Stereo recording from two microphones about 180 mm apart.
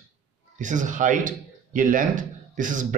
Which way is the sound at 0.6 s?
45° right (ahead or behind).